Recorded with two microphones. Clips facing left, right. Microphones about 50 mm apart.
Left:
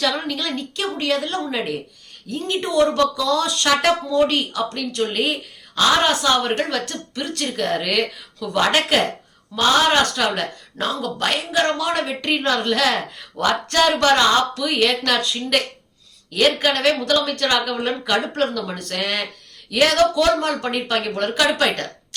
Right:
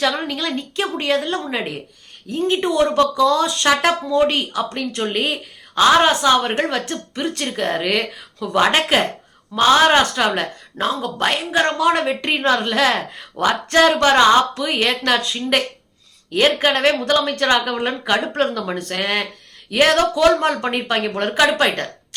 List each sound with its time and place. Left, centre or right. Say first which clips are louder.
0.0 s speech: right 2 dB; centre